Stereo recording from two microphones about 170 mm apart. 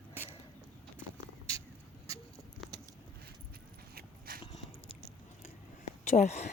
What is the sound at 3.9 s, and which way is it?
Dog, 60° right (ahead or behind).